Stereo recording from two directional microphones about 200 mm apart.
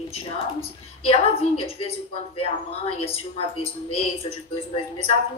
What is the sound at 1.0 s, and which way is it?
A woman's voice, 30° left (ahead or behind).